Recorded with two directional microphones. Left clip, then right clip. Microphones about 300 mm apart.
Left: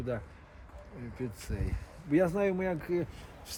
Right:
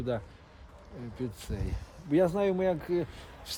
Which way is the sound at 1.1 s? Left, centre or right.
Right.